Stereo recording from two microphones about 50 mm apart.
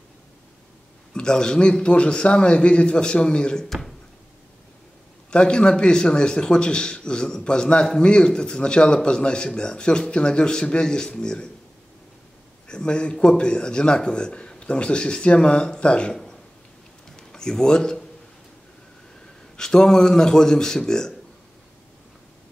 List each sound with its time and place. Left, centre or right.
1.1 s a man's voice: centre
3.6 s a sound: centre
5.3 s a man's voice: left
12.6 s a man's voice: centre
17.3 s speech: centre
19.5 s a man's voice: centre